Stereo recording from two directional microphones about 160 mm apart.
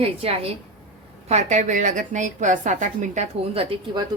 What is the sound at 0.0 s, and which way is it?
A woman's voice, 35° right (ahead or behind).